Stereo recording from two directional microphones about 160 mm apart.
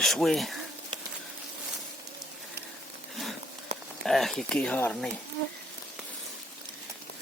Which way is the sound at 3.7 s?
45° right (ahead or behind).